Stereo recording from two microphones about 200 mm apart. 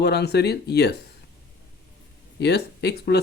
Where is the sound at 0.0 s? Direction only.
55° left (ahead or behind).